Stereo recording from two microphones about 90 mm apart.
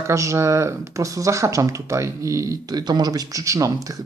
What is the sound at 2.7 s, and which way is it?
Speech, 50° right (ahead or behind).